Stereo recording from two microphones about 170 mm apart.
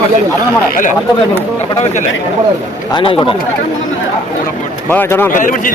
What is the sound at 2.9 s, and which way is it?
Speech, 30° left (ahead or behind).